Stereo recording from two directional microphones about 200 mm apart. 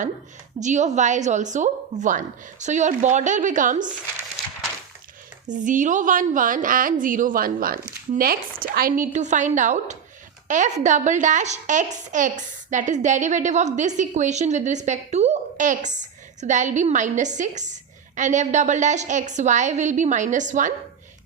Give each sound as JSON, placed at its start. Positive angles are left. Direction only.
{"t": 0.6, "sound": "a woman's voice", "side_deg": -35}
{"t": 5.5, "sound": "a woman's voice", "side_deg": -40}